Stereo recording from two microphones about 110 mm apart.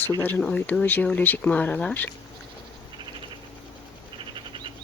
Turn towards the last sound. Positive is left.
turn(degrees=-45)  # may be behind; listen again after turning